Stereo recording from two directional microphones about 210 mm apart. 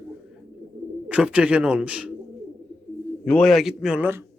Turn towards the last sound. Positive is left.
turn(degrees=-10)  # may be behind; listen again after turning